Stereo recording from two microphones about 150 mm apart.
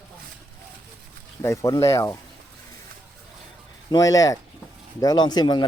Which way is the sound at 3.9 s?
25° left (ahead or behind).